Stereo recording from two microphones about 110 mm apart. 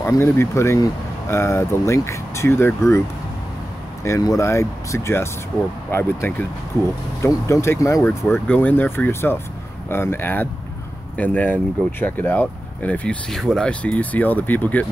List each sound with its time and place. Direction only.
0.0 s speech: 25° left (ahead or behind)
4.0 s speech: 30° left (ahead or behind)